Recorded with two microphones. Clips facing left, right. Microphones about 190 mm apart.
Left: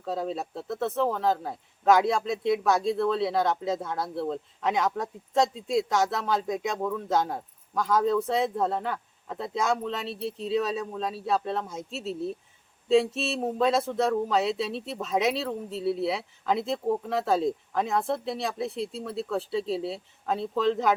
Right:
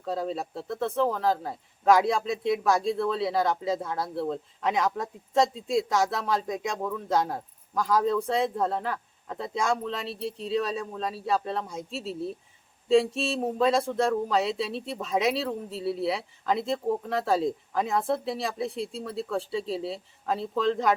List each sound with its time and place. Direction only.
0.0 s speech: centre (ahead or behind)